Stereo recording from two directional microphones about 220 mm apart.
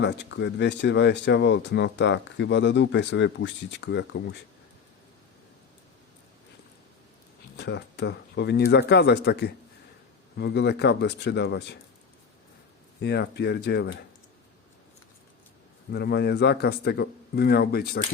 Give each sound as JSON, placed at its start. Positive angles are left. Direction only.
{"t": 0.0, "sound": "speech", "side_deg": 55}
{"t": 7.5, "sound": "speech", "side_deg": 50}
{"t": 13.0, "sound": "speech", "side_deg": 50}
{"t": 15.9, "sound": "speech", "side_deg": 50}